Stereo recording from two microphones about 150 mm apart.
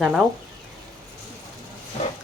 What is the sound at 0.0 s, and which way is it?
Speech, centre (ahead or behind).